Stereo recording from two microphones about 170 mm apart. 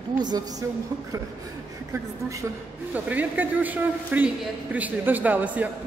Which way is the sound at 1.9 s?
20° right (ahead or behind).